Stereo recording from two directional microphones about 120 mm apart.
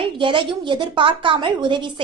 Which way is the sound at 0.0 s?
45° right (ahead or behind).